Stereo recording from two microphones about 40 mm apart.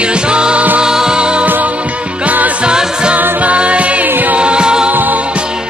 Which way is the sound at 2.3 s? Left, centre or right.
Right.